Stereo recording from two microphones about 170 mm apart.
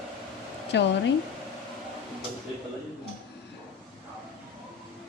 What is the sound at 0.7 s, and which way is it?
Speech, 90° left.